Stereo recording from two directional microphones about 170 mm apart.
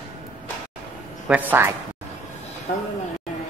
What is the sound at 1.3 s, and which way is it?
Speech, 10° right (ahead or behind).